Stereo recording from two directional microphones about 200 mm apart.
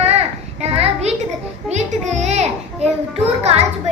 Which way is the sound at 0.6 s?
30° right (ahead or behind).